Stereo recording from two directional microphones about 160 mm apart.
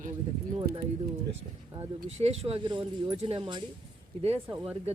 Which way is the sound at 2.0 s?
40° right (ahead or behind).